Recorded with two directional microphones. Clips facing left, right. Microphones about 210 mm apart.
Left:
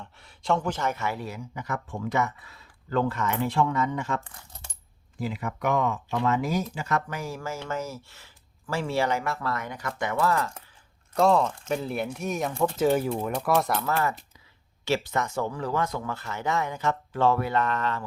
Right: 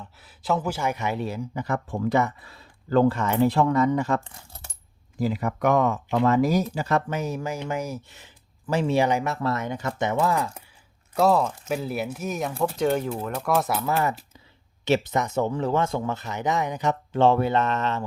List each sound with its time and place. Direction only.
0.0 s speech: 5° right (ahead or behind)
13.8 s speech: 15° right (ahead or behind)